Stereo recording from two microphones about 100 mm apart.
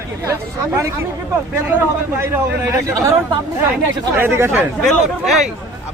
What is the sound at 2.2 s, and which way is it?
Speech, 30° right (ahead or behind).